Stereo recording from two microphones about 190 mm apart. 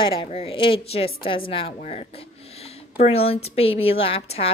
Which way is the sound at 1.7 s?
40° left (ahead or behind).